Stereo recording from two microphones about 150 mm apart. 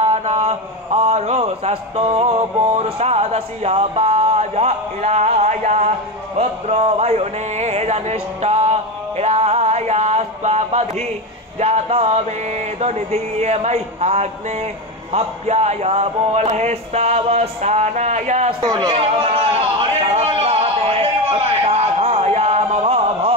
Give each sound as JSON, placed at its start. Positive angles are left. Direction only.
{"t": 0.0, "sound": "a man's voice", "side_deg": -50}
{"t": 18.6, "sound": "a man's voice", "side_deg": -30}
{"t": 20.2, "sound": "a sound", "side_deg": -45}